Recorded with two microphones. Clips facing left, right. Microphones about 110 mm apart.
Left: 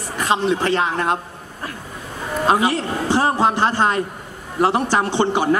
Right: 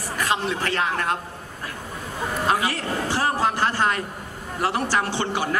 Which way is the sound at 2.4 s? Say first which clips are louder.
Left 7 dB; 25° left (ahead or behind).